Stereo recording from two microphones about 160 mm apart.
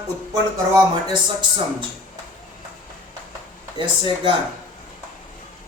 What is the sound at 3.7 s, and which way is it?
Speech, 30° right (ahead or behind).